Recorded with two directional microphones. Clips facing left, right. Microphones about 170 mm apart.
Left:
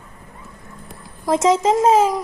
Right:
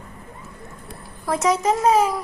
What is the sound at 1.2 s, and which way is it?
Speech, 25° left (ahead or behind).